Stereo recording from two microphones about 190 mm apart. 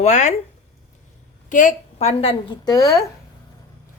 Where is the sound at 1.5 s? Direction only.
45° left (ahead or behind); by 3.0 s 20° left (ahead or behind).